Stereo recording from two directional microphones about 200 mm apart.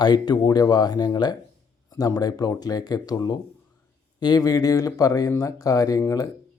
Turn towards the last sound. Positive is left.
turn(degrees=15)  # may be behind; listen again after turning